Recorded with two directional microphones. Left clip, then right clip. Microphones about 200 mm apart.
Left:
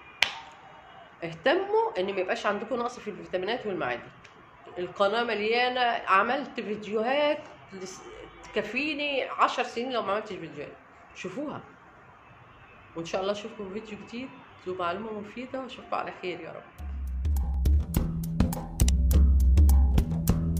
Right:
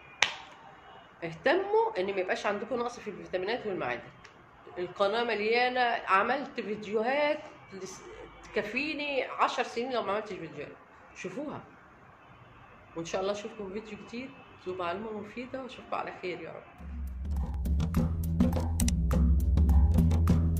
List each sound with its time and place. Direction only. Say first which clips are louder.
1.2 s a woman's voice: left 2 dB; 15° left (ahead or behind)
12.9 s a woman's voice: left 2 dB; 15° left (ahead or behind)
17.2 s music: left 4 dB; centre (ahead or behind)